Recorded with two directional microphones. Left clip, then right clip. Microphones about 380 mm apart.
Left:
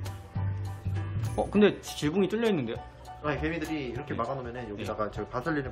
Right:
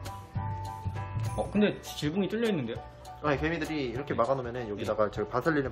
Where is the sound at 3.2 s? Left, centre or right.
Centre.